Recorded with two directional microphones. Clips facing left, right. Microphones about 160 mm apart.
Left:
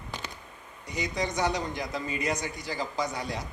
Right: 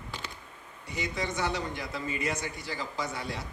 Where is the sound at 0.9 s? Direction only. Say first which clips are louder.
Left 2 dB; 15° left (ahead or behind).